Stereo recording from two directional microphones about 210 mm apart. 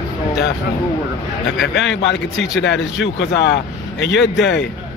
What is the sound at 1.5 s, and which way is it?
A man's voice, 60° left (ahead or behind).